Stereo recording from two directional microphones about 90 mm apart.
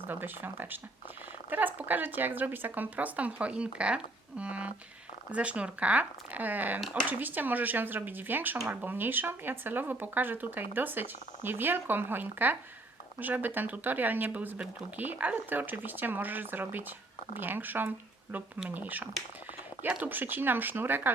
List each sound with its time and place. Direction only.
0.1 s speech: 20° right (ahead or behind)